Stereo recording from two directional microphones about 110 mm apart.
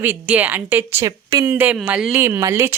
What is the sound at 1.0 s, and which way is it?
Speech, 30° right (ahead or behind).